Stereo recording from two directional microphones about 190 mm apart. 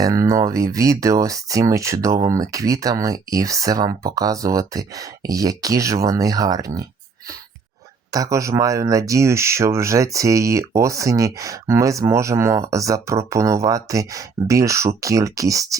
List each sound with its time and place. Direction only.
0.0 s speech: 15° right (ahead or behind)
8.1 s speech: 15° right (ahead or behind)